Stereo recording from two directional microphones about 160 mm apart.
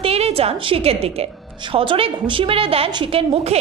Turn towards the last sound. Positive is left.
turn(degrees=-40)  # may be behind; listen again after turning